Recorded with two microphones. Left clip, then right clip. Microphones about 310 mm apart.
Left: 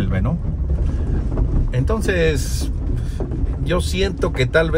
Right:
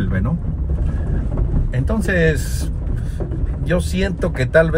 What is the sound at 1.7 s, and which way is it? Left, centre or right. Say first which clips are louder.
Speech: even; centre.